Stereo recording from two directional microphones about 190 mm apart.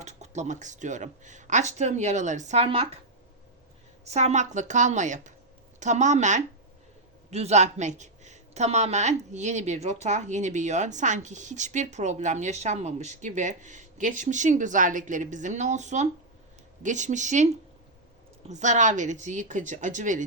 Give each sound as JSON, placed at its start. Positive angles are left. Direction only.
{"t": 0.0, "sound": "speech", "side_deg": -35}
{"t": 4.0, "sound": "speech", "side_deg": -35}